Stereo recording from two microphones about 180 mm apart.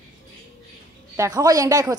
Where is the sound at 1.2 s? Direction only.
20° right (ahead or behind).